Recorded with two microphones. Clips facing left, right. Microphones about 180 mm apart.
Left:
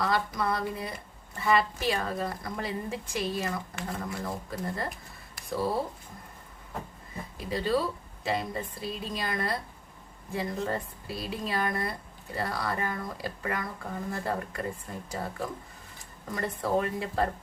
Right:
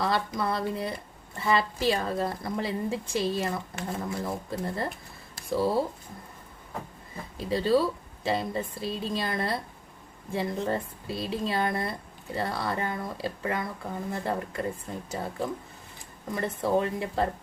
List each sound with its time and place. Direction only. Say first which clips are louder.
0.0 s speech: right 1 dB; 30° right (ahead or behind)
5.3 s a sound: right 4 dB; 30° right (ahead or behind)
7.3 s speech: right 4 dB; 30° right (ahead or behind)